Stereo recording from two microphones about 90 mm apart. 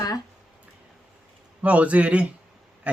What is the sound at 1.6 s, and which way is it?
Speech, 15° right (ahead or behind).